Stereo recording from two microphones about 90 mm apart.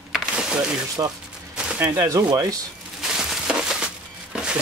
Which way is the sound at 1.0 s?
40° right (ahead or behind).